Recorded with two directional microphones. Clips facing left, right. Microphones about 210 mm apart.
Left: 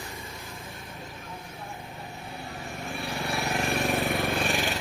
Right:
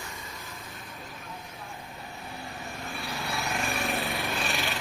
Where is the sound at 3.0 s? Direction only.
30° left (ahead or behind).